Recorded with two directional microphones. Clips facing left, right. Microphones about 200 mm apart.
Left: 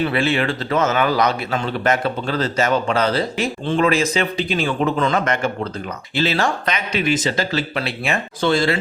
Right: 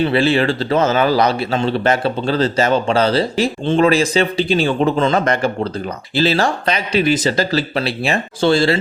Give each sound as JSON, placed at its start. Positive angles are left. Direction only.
{"t": 0.0, "sound": "a man's voice", "side_deg": -30}